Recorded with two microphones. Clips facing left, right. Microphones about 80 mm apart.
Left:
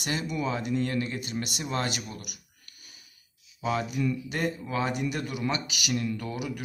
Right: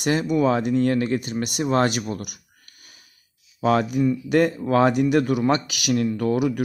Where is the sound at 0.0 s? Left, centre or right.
Right.